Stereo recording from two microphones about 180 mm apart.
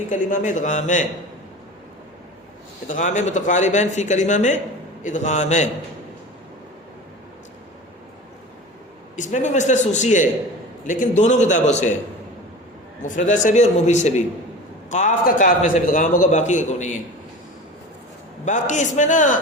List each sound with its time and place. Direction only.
0.1 s a man's voice: 45° left (ahead or behind)
2.8 s a man's voice: 45° left (ahead or behind)
9.1 s a man's voice: 45° left (ahead or behind)
13.4 s a man's voice: 40° left (ahead or behind)
18.4 s a man's voice: 45° left (ahead or behind)